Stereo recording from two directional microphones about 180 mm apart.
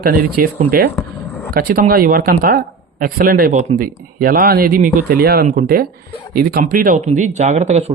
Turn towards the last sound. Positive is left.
turn(degrees=-40)  # may be behind; listen again after turning